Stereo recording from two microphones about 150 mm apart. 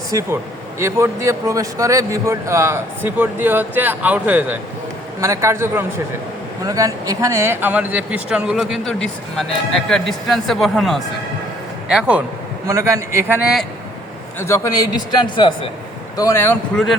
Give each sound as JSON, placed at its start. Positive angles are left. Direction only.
{"t": 0.1, "sound": "a man's voice", "side_deg": -20}
{"t": 12.6, "sound": "a man's voice", "side_deg": -20}
{"t": 14.3, "sound": "a man's voice", "side_deg": 15}
{"t": 16.1, "sound": "a man's voice", "side_deg": 20}